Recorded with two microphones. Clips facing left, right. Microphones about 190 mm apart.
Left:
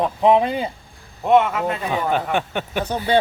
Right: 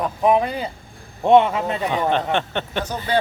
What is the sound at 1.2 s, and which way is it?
Speech, 30° right (ahead or behind).